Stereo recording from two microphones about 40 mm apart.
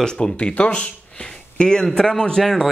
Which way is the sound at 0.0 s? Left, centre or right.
Centre.